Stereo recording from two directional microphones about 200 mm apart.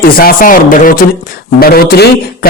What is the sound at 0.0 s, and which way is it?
A man's voice, 45° left (ahead or behind).